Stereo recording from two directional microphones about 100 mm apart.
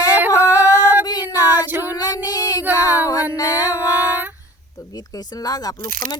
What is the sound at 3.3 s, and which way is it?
Music, 35° left (ahead or behind).